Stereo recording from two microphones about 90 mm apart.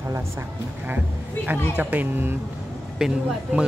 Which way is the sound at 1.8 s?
20° right (ahead or behind).